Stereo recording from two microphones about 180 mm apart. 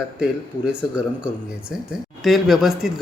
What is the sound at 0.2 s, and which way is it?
Speech, 5° right (ahead or behind).